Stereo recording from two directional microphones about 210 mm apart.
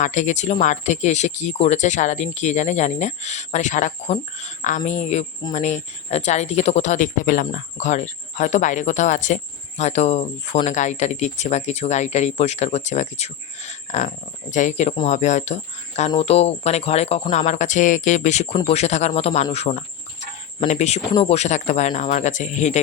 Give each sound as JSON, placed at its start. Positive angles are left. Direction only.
{"t": 0.0, "sound": "speech", "side_deg": 35}